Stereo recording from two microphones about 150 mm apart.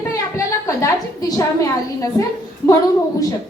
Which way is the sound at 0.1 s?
20° left (ahead or behind).